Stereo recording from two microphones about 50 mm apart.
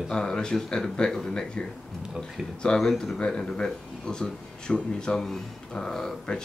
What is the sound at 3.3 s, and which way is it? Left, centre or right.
Speech, centre.